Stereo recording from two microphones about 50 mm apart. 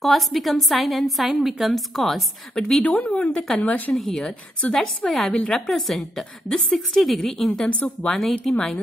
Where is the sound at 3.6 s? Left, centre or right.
Left.